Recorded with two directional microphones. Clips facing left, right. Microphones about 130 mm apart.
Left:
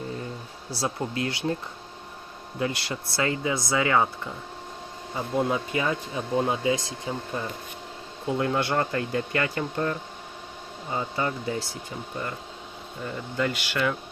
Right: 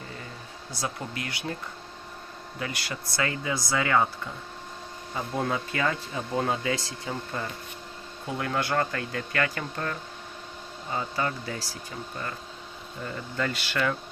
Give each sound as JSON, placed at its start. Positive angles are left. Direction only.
{"t": 0.7, "sound": "speech", "side_deg": 30}
{"t": 2.6, "sound": "speech", "side_deg": 25}
{"t": 5.1, "sound": "speech", "side_deg": 20}
{"t": 8.3, "sound": "speech", "side_deg": 20}